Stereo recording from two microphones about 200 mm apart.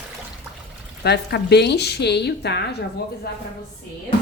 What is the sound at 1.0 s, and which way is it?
A woman's voice, 55° left (ahead or behind).